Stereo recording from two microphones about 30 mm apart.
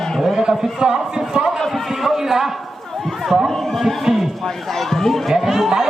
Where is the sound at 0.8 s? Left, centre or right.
Right.